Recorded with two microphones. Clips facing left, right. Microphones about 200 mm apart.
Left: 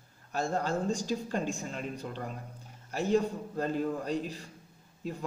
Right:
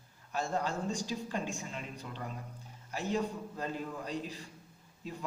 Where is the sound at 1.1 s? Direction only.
45° left (ahead or behind).